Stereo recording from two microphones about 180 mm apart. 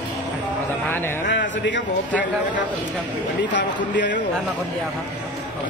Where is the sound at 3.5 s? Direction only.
80° left.